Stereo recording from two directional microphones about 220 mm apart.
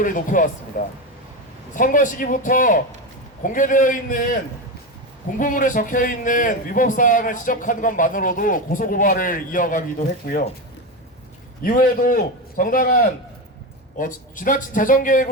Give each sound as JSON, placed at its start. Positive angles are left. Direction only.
{"t": 0.0, "sound": "a man's voice", "side_deg": 35}
{"t": 5.4, "sound": "a man's voice", "side_deg": 35}
{"t": 11.6, "sound": "a man's voice", "side_deg": 40}